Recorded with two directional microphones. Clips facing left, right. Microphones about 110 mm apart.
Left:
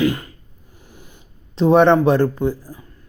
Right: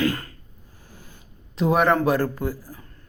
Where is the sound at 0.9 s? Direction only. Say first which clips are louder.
Left 2 dB; 20° left (ahead or behind).